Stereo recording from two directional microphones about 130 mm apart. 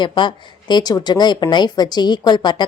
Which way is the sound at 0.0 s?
35° left (ahead or behind).